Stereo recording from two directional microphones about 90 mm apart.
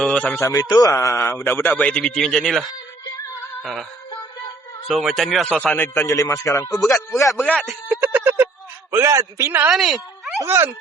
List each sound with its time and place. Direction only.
0.0 s a sound: 10° left (ahead or behind)
0.4 s a man's voice: 45° left (ahead or behind)
0.9 s a man's voice: 30° left (ahead or behind); by 2.6 s 5° left (ahead or behind)
3.6 s music: centre (ahead or behind)
4.9 s speech: centre (ahead or behind)
5.5 s a man's voice: 15° left (ahead or behind); by 7.3 s 35° left (ahead or behind)
7.9 s a sound: 20° right (ahead or behind)
8.9 s a man's voice: 35° right (ahead or behind)
9.5 s speech: 25° right (ahead or behind)
9.7 s speech: 5° right (ahead or behind)
10.4 s speech: 30° right (ahead or behind)